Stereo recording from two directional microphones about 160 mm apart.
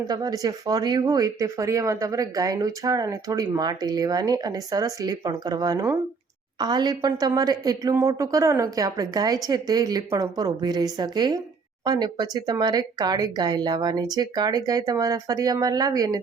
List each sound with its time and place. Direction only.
0.1 s speech: 25° right (ahead or behind)